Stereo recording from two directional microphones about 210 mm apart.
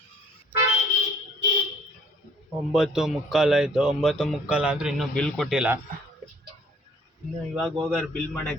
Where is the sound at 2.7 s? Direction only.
Centre (ahead or behind).